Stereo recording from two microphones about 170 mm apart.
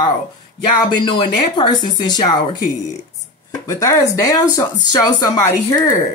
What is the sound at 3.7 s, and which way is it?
Speech, 20° left (ahead or behind).